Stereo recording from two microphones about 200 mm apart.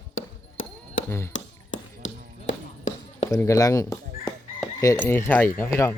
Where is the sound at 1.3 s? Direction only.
40° left (ahead or behind).